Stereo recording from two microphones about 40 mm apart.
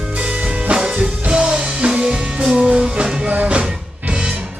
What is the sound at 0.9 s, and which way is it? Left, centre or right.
Music, right.